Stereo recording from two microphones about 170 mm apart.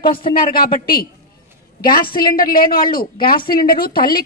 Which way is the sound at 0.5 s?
60° left (ahead or behind).